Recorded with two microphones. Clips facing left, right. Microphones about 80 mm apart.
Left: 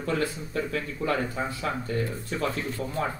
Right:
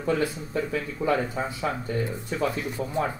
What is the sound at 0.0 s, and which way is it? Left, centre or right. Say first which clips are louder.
Speech: right 3 dB; centre.